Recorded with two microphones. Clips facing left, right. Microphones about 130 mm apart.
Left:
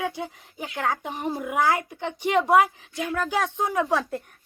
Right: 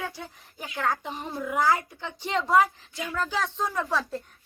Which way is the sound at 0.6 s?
60° left (ahead or behind).